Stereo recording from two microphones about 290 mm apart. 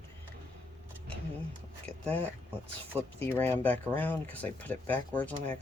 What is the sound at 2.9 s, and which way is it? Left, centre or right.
Speech, centre.